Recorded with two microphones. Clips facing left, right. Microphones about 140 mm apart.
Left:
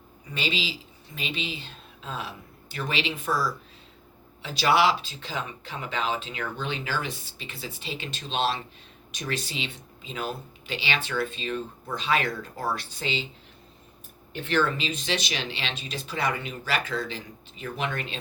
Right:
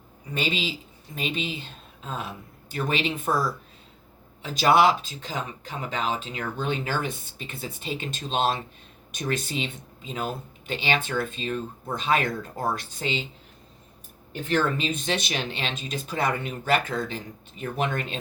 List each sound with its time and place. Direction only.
0.3 s speech: 50° right (ahead or behind)
4.4 s speech: 45° right (ahead or behind)
14.4 s speech: 45° right (ahead or behind)